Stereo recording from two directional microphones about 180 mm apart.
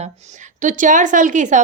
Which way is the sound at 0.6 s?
45° right (ahead or behind).